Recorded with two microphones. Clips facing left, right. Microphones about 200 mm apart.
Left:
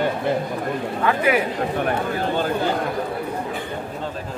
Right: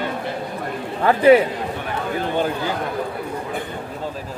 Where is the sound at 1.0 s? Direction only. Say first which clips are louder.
Right 8 dB; 30° right (ahead or behind).